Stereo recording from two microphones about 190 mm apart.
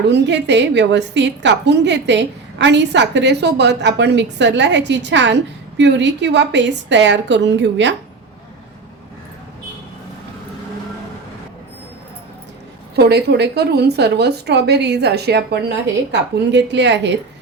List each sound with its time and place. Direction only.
0.1 s a woman's voice: 65° right (ahead or behind)
13.0 s a woman's voice: 60° right (ahead or behind)